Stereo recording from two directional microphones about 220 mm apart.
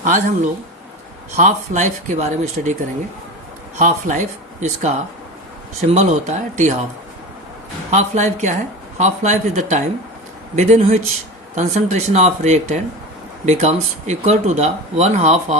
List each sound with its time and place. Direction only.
0.0 s speech: 35° right (ahead or behind)
3.8 s speech: 35° right (ahead or behind)
7.9 s speech: 30° right (ahead or behind)